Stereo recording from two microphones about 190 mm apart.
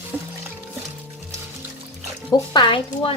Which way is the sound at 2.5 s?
25° left (ahead or behind).